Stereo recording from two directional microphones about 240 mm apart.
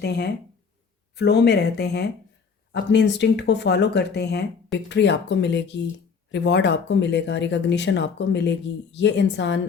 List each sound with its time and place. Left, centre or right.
0.0 s speech: left